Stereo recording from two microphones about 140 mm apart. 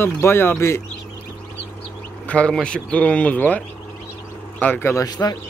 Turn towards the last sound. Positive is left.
turn(degrees=25)  # may be behind; listen again after turning